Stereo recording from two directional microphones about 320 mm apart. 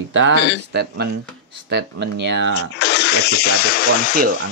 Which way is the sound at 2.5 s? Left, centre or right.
Left.